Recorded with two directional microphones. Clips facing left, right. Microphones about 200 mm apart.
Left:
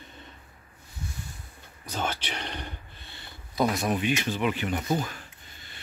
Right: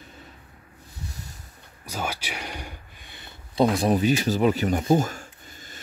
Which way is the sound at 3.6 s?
30° right (ahead or behind).